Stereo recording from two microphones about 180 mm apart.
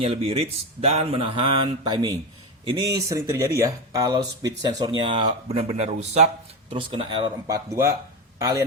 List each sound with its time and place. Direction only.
0.0 s a man's voice: 30° right (ahead or behind)